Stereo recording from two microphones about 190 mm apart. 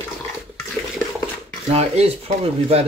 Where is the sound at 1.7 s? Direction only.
30° right (ahead or behind).